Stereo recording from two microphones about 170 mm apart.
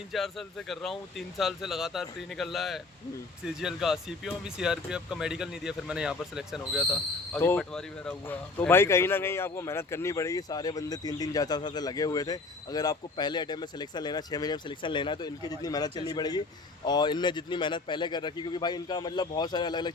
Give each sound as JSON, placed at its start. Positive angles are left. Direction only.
{"t": 0.1, "sound": "speech", "side_deg": 0}
{"t": 7.3, "sound": "speech", "side_deg": 10}